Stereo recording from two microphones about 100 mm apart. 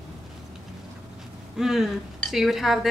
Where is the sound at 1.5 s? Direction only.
5° right (ahead or behind).